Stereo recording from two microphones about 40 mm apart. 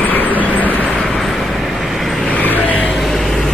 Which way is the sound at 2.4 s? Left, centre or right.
Left.